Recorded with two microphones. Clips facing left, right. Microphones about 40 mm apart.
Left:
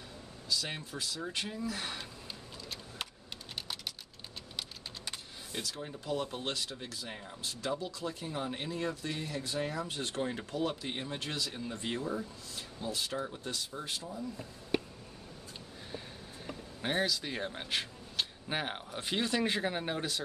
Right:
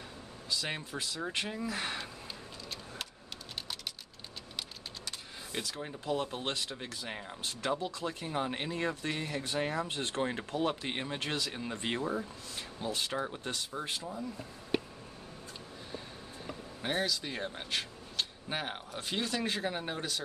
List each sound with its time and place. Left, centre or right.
0.5 s speech: right
5.5 s speech: right
16.8 s speech: centre